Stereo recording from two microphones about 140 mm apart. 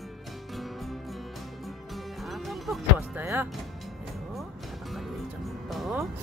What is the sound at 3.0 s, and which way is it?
Music, 15° right (ahead or behind).